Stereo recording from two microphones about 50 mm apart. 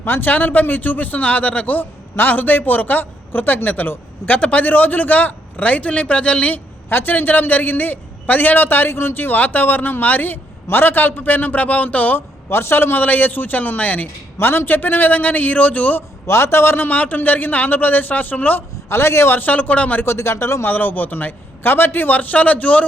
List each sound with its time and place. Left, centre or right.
0.0 s a man's voice: left
1.8 s a man's voice: left
6.9 s a man's voice: left
12.5 s a man's voice: left
13.0 s a man's voice: left
14.3 s a man's voice: left
16.2 s a man's voice: left
16.9 s a man's voice: left
18.9 s a man's voice: left
19.4 s a man's voice: left
20.1 s a man's voice: left
20.7 s a man's voice: left